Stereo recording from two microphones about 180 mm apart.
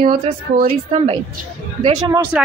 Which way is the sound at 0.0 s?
55° right (ahead or behind).